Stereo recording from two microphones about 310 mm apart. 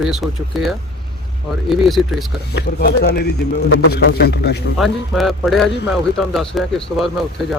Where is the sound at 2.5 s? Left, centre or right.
Left.